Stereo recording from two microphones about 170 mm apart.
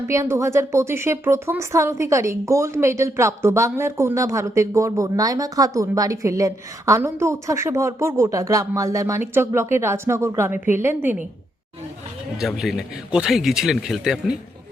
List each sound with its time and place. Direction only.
0.1 s speech: 15° right (ahead or behind)
12.4 s speech: centre (ahead or behind)